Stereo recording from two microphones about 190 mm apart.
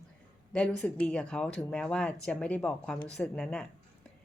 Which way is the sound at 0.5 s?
5° left (ahead or behind).